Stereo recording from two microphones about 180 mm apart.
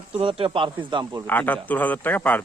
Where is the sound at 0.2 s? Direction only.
30° right (ahead or behind).